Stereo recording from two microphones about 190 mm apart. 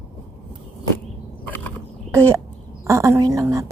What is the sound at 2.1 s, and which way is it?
A woman's voice, 15° right (ahead or behind).